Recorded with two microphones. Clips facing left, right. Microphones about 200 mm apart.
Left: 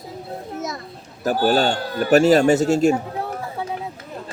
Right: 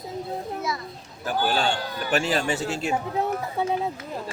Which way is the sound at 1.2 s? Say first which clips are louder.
Left 6 dB; 40° left (ahead or behind).